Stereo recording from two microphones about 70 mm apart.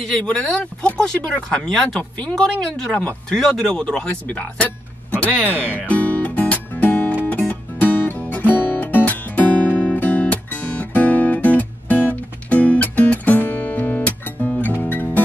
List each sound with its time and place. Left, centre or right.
0.9 s speech: centre
5.7 s music: left